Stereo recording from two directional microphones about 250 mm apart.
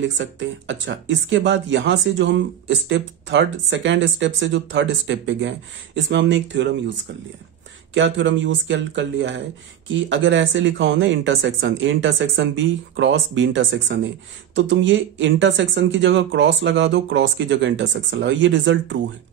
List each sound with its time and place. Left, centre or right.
0.0 s speech: right
7.9 s speech: right